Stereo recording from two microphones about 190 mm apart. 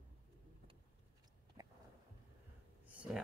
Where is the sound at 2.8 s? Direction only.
5° right (ahead or behind).